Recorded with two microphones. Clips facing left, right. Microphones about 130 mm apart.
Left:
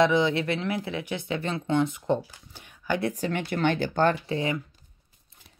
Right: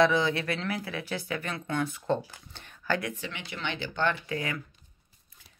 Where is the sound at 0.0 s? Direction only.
20° left (ahead or behind).